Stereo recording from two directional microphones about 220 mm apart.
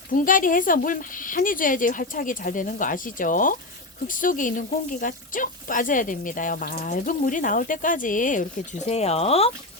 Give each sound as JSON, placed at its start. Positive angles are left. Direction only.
{"t": 0.1, "sound": "speech", "side_deg": 40}